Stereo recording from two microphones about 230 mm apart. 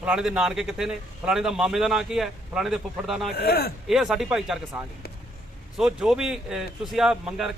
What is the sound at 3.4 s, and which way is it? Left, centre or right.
Speech, left.